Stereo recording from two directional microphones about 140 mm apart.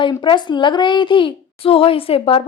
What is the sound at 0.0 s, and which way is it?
A woman's voice, 35° left (ahead or behind).